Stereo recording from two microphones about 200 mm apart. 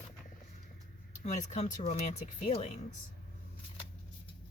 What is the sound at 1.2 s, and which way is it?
Speech, 35° left (ahead or behind).